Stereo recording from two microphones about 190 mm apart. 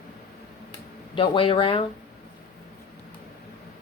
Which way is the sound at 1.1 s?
25° left (ahead or behind).